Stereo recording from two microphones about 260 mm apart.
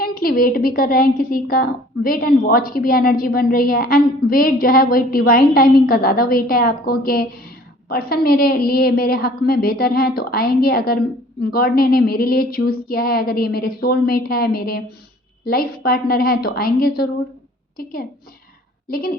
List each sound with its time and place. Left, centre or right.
0.0 s a woman's voice: left
18.9 s a woman's voice: left